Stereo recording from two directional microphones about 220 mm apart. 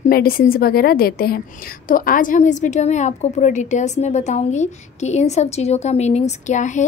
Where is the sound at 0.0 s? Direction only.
40° left (ahead or behind).